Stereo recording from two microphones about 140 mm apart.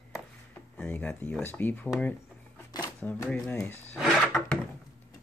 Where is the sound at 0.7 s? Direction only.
10° left (ahead or behind).